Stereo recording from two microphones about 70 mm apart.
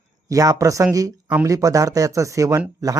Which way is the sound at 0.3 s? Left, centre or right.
Right.